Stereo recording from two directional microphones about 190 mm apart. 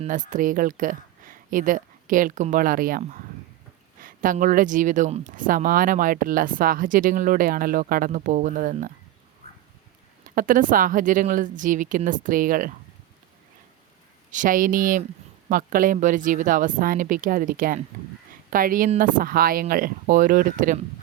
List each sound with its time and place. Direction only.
0.0 s speech: 45° right (ahead or behind)
10.2 s speech: 45° right (ahead or behind)
14.3 s speech: 45° right (ahead or behind)